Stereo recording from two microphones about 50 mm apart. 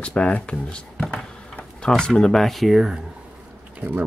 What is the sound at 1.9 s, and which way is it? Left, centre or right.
Speech, centre.